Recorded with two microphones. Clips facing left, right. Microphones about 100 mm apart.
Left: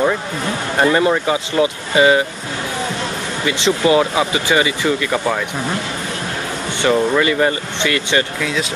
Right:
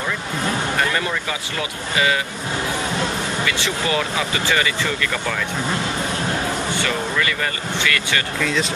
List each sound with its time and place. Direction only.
0.7 s speech: 30° left (ahead or behind)
3.4 s speech: 20° left (ahead or behind)
6.8 s speech: 25° left (ahead or behind)
8.4 s speech: 5° left (ahead or behind)